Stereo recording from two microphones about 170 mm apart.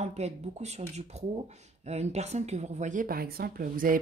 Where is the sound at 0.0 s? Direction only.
40° right (ahead or behind).